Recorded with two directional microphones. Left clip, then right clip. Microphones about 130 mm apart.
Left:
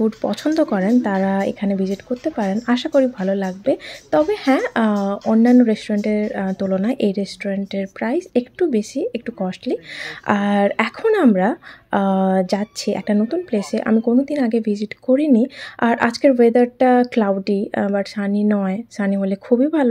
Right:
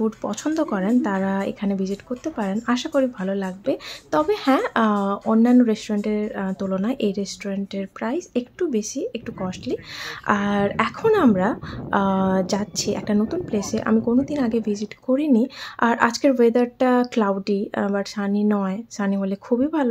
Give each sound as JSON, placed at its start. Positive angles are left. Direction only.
{"t": 0.0, "sound": "a woman's voice", "side_deg": 30}